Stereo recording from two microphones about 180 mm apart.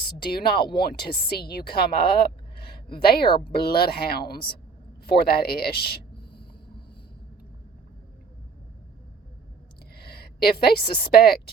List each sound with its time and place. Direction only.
0.3 s a woman's voice: 60° left (ahead or behind)
9.9 s a woman's voice: 60° left (ahead or behind)